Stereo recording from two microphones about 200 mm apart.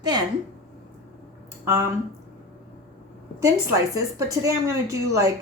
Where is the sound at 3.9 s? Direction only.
15° right (ahead or behind).